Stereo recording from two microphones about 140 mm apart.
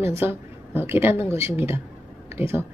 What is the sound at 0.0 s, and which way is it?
Speech, 15° right (ahead or behind).